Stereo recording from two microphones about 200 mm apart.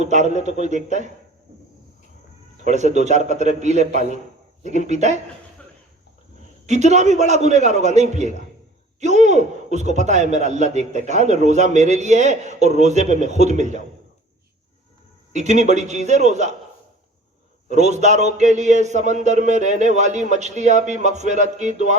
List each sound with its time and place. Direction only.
0.0 s a man's voice: 35° right (ahead or behind)
2.6 s a man's voice: 35° right (ahead or behind)
6.7 s a man's voice: 35° right (ahead or behind)
15.3 s a man's voice: 35° right (ahead or behind)
17.7 s a man's voice: 35° right (ahead or behind)